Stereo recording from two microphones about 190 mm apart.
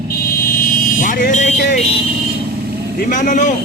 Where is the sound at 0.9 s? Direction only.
45° left (ahead or behind).